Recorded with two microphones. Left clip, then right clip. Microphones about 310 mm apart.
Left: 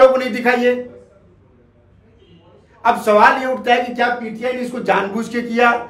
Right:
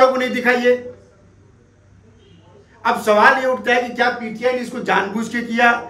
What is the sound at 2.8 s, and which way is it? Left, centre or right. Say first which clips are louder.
A man's voice: left 1 dB; centre.